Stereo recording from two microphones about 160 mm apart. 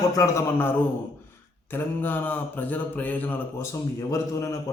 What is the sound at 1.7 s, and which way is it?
Mantra, 10° left (ahead or behind).